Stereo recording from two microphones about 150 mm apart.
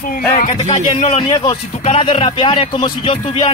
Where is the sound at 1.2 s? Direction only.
35° left (ahead or behind).